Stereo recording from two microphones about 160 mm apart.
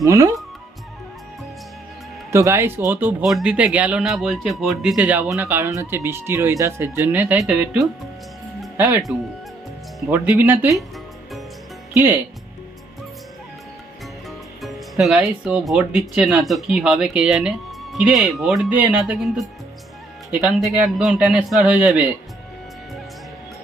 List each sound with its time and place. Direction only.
0.0 s speech: 20° right (ahead or behind)
2.3 s speech: 15° right (ahead or behind)
10.1 s speech: 10° right (ahead or behind)
14.3 s speech: centre (ahead or behind)